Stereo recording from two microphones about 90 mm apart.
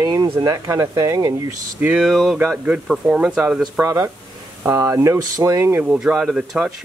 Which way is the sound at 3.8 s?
30° right (ahead or behind).